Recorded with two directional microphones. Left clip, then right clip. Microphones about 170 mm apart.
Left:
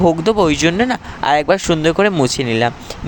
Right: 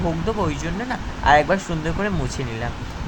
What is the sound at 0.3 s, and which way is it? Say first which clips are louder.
Speech: left 11 dB; 65° left (ahead or behind).